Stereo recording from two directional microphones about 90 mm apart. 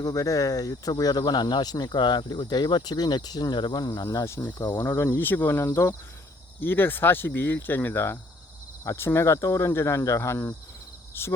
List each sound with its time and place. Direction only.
0.0 s speech: 40° left (ahead or behind)
4.8 s speech: 30° left (ahead or behind)